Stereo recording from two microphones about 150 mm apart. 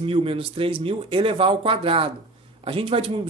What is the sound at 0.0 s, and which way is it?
Speech, 40° right (ahead or behind).